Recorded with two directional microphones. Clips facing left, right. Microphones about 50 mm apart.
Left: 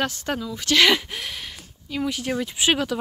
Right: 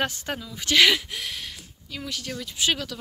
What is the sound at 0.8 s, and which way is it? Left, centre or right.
Speech, centre.